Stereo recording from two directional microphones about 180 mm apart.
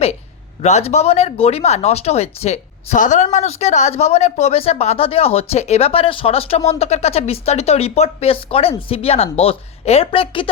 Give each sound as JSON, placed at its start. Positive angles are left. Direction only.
{"t": 0.6, "sound": "speech", "side_deg": 35}